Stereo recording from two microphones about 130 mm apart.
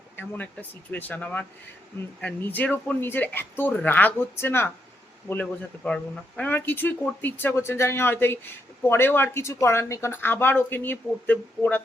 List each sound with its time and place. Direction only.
0.9 s speech: 15° left (ahead or behind)